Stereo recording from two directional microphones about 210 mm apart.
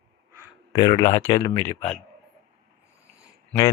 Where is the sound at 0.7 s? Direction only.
20° left (ahead or behind).